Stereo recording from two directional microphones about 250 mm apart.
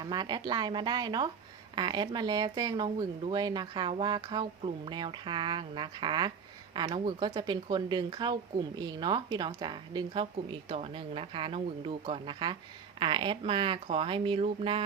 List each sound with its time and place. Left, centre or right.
0.0 s a woman's voice: centre